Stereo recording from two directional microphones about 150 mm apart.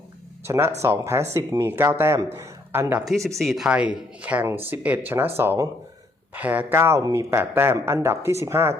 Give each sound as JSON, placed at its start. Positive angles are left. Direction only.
{"t": 0.4, "sound": "a man's voice", "side_deg": -15}
{"t": 3.2, "sound": "a man's voice", "side_deg": 0}